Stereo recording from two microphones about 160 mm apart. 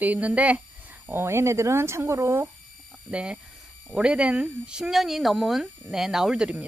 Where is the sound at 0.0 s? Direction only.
10° right (ahead or behind).